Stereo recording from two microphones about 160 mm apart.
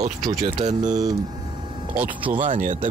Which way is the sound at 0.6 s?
45° right (ahead or behind).